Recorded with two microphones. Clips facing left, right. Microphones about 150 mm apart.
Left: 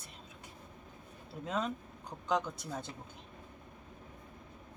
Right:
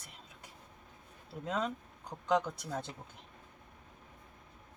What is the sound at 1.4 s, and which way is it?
Speech, 5° left (ahead or behind).